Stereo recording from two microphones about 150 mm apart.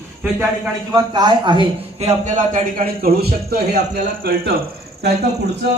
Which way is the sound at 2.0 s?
50° right (ahead or behind).